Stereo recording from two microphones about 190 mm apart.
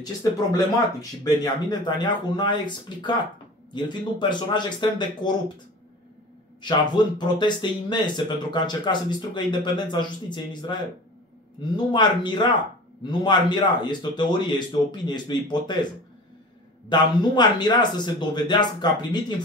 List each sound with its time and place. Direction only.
0.0 s speech: 20° left (ahead or behind)
6.6 s speech: 25° left (ahead or behind)
16.9 s speech: 25° left (ahead or behind)